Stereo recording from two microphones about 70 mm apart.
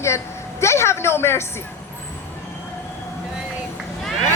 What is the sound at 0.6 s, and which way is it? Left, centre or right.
Speech, left.